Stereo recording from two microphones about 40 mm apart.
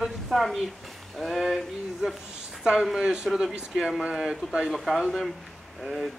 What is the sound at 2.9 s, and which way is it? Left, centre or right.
A man's voice, centre.